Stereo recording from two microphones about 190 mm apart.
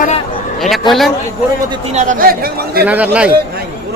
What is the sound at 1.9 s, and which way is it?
Speech, 40° right (ahead or behind).